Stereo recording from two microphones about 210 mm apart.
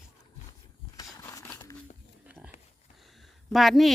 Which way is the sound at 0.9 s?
15° left (ahead or behind).